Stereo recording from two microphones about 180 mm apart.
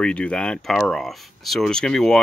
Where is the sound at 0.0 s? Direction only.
5° left (ahead or behind).